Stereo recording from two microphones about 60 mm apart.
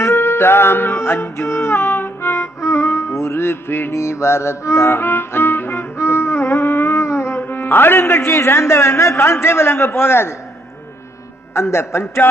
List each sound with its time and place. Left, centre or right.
0.0 s music: left
3.9 s music: left
11.5 s speech: left